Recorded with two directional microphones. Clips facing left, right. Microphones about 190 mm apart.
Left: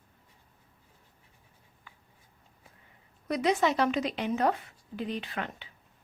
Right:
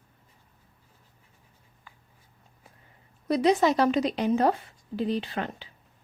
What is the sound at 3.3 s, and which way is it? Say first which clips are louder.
Speech: right 5 dB; 35° right (ahead or behind).